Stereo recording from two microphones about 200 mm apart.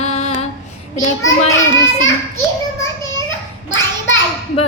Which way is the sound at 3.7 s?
70° left (ahead or behind).